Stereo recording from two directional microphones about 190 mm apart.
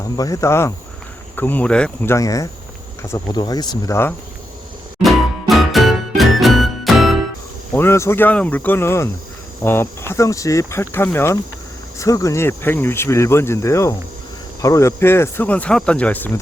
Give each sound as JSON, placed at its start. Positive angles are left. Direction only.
{"t": 0.0, "sound": "speech", "side_deg": 20}
{"t": 2.1, "sound": "speech", "side_deg": 15}
{"t": 5.0, "sound": "music", "side_deg": 0}
{"t": 7.7, "sound": "speech", "side_deg": 10}